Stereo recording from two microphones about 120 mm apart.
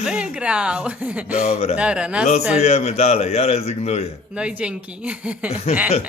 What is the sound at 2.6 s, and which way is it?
A man's voice, 65° left (ahead or behind).